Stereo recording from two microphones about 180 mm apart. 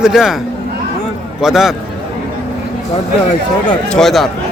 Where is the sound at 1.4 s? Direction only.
5° right (ahead or behind).